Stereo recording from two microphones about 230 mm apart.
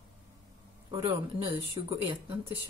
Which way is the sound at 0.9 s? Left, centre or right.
Right.